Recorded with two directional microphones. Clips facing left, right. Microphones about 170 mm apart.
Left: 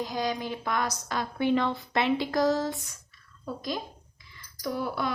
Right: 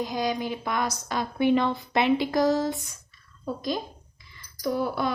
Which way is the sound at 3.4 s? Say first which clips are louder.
Right 4 dB; 25° right (ahead or behind).